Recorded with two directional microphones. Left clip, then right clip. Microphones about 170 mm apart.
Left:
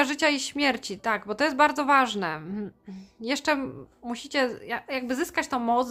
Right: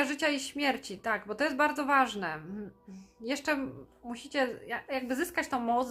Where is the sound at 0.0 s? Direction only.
35° left (ahead or behind).